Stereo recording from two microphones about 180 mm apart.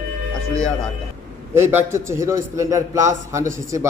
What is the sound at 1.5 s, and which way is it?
A man's voice, 15° right (ahead or behind).